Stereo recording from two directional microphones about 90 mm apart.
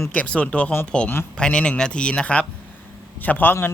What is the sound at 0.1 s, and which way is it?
A man's voice, 15° left (ahead or behind).